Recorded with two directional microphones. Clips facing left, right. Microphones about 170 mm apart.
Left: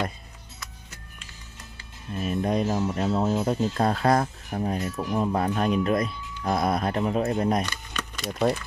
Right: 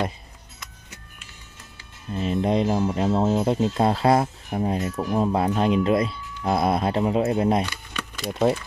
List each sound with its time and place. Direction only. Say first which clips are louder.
2.1 s speech: right 3 dB; 25° right (ahead or behind)
7.6 s a sound: right 1 dB; 10° right (ahead or behind)
8.3 s speech: right 3 dB; 25° right (ahead or behind)